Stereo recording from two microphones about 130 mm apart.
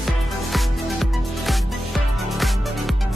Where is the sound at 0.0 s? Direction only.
Centre (ahead or behind).